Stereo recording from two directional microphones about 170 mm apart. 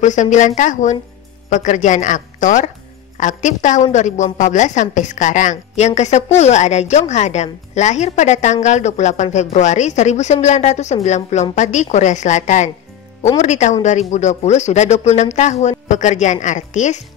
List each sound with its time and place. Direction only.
0.0 s a woman's voice: 45° left (ahead or behind)